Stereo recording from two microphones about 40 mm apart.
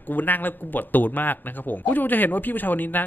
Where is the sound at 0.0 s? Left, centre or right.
Left.